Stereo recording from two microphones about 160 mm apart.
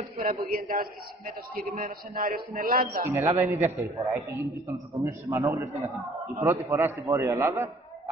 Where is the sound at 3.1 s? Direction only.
15° right (ahead or behind).